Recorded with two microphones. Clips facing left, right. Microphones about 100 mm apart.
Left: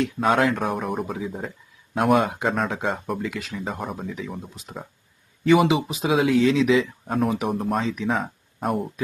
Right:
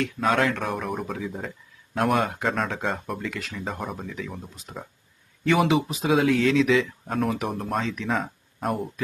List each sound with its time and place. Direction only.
0.3 s speech: 5° left (ahead or behind)